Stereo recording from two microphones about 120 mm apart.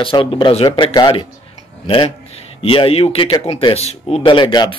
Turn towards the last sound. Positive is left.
turn(degrees=40)  # may be behind; listen again after turning